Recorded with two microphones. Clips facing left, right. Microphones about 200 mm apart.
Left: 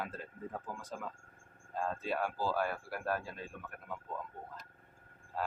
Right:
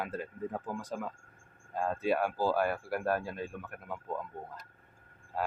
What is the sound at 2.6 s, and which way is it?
Speech, 55° right (ahead or behind).